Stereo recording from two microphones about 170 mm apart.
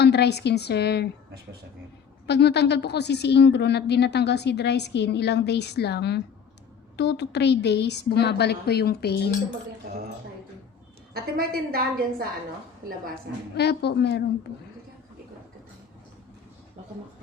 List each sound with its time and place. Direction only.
0.0 s a woman's voice: 80° left
2.2 s a woman's voice: 80° left
6.9 s a woman's voice: 90° left; by 9.3 s 70° left (ahead or behind)
11.1 s a woman's voice: 65° right (ahead or behind)
13.6 s a woman's voice: 75° left (ahead or behind)